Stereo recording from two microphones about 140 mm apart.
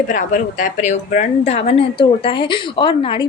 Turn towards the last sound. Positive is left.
turn(degrees=35)  # may be behind; listen again after turning